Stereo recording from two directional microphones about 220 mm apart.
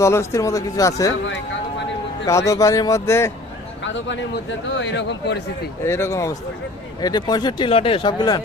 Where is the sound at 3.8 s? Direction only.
55° left (ahead or behind).